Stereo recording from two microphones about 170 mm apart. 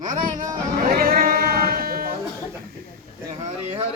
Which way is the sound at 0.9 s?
60° right (ahead or behind).